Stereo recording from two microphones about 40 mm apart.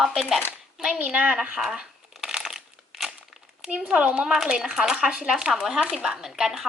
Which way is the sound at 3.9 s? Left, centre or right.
Right.